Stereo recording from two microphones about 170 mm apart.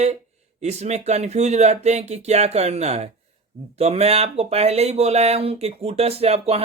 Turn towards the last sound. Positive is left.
turn(degrees=-35)  # may be behind; listen again after turning